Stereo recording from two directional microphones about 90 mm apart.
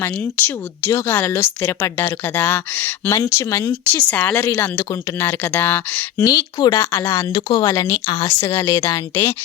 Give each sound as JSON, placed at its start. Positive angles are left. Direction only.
{"t": 0.0, "sound": "speech", "side_deg": 25}
{"t": 3.1, "sound": "a woman's voice", "side_deg": 30}
{"t": 3.9, "sound": "speech", "side_deg": 15}
{"t": 6.2, "sound": "speech", "side_deg": 50}
{"t": 6.7, "sound": "a woman's voice", "side_deg": 30}
{"t": 7.3, "sound": "speech", "side_deg": 60}
{"t": 7.6, "sound": "a woman's voice", "side_deg": 30}